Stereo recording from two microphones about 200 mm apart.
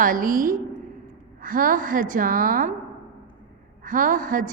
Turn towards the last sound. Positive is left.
turn(degrees=-40)  # may be behind; listen again after turning